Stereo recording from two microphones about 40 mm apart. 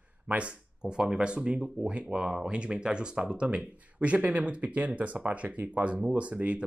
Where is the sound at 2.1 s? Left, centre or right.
Centre.